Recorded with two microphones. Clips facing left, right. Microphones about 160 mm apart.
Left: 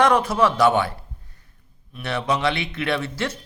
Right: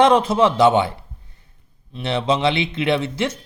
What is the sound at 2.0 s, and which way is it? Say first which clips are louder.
Speech: right 4 dB; 25° right (ahead or behind).